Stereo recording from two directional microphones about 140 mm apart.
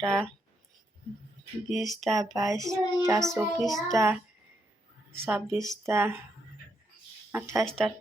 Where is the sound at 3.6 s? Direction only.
Centre (ahead or behind).